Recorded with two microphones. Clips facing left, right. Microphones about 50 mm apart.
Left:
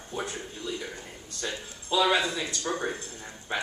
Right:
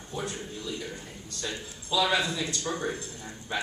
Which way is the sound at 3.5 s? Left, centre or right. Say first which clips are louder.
Left 1 dB; left.